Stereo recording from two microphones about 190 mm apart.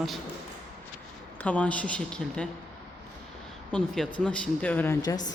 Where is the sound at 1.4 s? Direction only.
5° left (ahead or behind).